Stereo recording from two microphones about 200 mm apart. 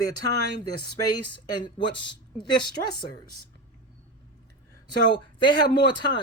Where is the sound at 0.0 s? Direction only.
20° left (ahead or behind).